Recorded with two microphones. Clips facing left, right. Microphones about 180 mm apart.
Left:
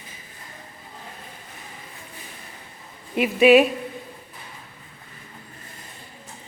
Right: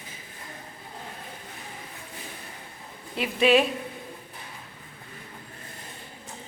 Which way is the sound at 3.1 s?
15° left (ahead or behind).